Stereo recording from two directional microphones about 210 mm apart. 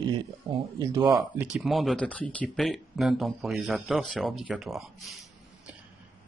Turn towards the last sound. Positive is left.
turn(degrees=0)  # may be behind; listen again after turning